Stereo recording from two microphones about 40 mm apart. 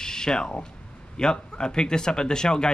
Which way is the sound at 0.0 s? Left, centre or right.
Centre.